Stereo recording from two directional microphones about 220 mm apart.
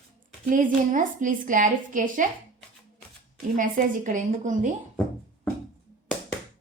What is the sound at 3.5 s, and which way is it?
A woman's voice, 35° right (ahead or behind).